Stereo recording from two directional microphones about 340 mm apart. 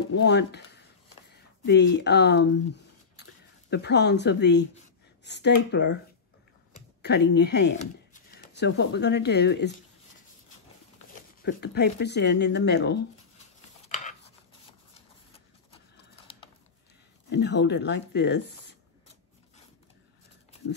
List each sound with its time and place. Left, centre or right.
0.1 s speech: left
1.7 s speech: left
7.0 s speech: left
11.4 s speech: left
17.3 s speech: left